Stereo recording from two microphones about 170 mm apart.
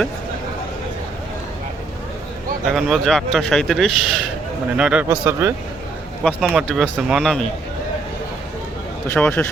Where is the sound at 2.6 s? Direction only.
Centre (ahead or behind).